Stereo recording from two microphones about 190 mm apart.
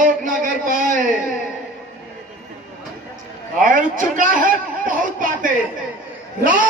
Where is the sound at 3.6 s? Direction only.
45° right (ahead or behind).